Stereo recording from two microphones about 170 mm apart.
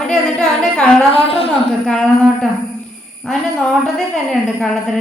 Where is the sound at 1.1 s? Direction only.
35° left (ahead or behind).